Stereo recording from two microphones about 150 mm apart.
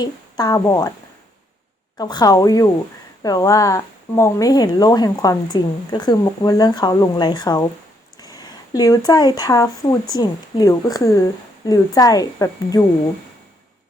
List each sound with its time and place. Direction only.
0.0 s speech: 25° left (ahead or behind)
2.0 s speech: 25° left (ahead or behind)